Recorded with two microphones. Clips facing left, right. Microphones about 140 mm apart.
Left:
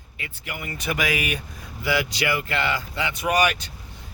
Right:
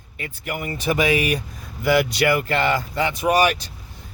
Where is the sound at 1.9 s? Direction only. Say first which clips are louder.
Right 6 dB; 55° right (ahead or behind); by 3.6 s 30° right (ahead or behind).